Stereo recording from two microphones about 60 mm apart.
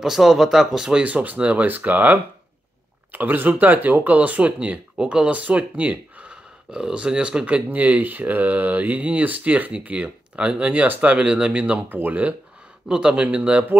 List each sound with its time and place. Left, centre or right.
0.0 s speech: centre
0.9 s speech: right
12.8 s speech: centre